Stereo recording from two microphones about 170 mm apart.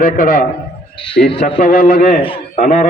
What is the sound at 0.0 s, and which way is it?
Speech, 55° left (ahead or behind).